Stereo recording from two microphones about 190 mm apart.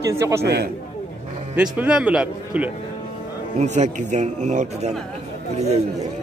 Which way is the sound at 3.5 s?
40° right (ahead or behind).